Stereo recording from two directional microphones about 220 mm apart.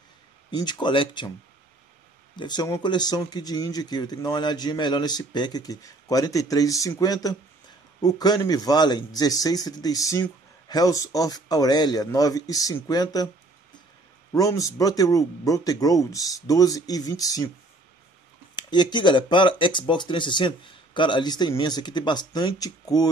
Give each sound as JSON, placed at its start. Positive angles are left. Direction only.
{"t": 0.5, "sound": "speech", "side_deg": 20}
{"t": 2.3, "sound": "speech", "side_deg": 20}
{"t": 14.3, "sound": "speech", "side_deg": 15}
{"t": 18.6, "sound": "speech", "side_deg": 20}